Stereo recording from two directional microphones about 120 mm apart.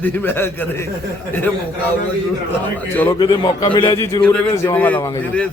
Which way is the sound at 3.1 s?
40° left (ahead or behind).